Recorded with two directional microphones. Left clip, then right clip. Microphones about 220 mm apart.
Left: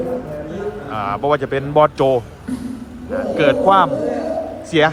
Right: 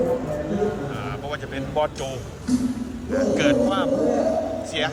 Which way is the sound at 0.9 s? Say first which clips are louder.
Left 12 dB; 20° left (ahead or behind).